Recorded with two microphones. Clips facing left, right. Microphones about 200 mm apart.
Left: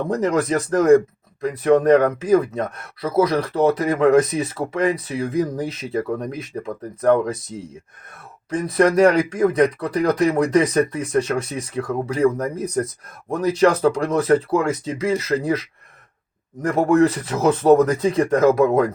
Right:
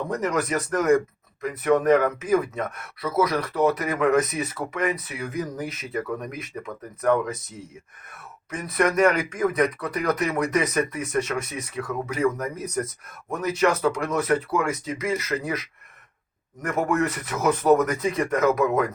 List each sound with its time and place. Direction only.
0.1 s speech: 30° left (ahead or behind)
16.6 s speech: 30° left (ahead or behind)